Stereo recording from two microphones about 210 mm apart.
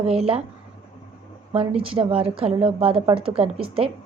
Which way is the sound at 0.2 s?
25° right (ahead or behind).